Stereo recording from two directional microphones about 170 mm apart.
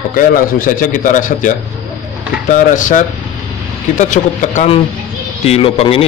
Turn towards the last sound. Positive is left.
turn(degrees=35)  # may be behind; listen again after turning